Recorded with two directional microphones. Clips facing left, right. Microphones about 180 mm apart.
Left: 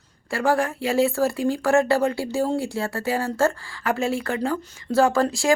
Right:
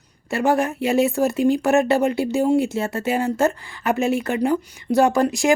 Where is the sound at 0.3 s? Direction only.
20° right (ahead or behind).